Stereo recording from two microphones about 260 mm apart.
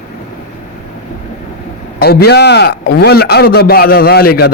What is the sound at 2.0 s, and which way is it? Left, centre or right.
A man's voice, left.